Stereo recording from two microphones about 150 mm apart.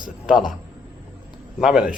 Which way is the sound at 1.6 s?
5° right (ahead or behind).